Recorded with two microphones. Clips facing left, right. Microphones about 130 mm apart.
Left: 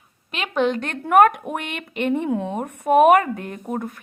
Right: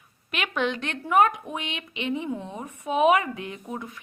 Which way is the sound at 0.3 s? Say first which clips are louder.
Left 6 dB; 35° left (ahead or behind).